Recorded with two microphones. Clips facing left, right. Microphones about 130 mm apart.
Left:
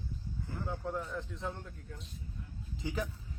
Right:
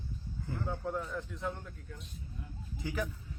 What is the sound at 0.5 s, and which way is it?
Speech, centre (ahead or behind).